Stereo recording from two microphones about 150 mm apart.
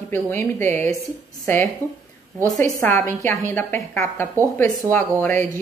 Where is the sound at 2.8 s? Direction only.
15° left (ahead or behind).